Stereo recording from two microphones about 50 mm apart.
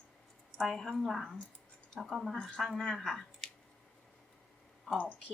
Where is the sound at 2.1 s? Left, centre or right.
Centre.